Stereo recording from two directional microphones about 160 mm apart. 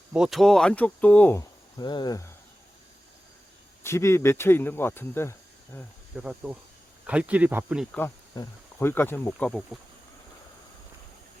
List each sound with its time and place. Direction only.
0.1 s speech: 5° right (ahead or behind)
1.8 s speech: 30° left (ahead or behind)
3.8 s speech: 15° left (ahead or behind)
6.1 s speech: 5° right (ahead or behind)
8.4 s speech: 15° left (ahead or behind)
9.7 s speech: centre (ahead or behind)